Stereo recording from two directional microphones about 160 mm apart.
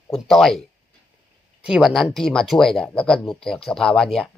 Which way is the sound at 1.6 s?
Centre (ahead or behind).